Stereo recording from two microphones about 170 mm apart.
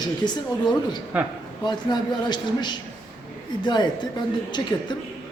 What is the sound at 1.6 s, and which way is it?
A man's voice, 25° left (ahead or behind).